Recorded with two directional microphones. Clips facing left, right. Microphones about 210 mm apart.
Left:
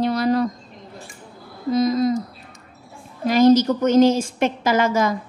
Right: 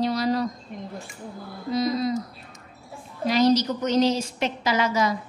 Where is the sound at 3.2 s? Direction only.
50° left (ahead or behind).